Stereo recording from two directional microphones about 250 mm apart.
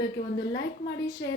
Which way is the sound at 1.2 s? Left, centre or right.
Left.